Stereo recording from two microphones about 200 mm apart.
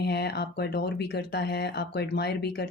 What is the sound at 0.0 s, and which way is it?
A woman's voice, 55° left (ahead or behind).